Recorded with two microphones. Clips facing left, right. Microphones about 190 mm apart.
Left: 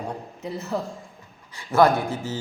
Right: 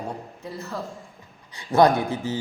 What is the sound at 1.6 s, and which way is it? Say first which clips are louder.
Speech: right 1 dB; 15° right (ahead or behind).